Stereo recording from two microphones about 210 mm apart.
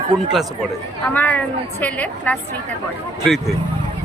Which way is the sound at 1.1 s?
10° left (ahead or behind).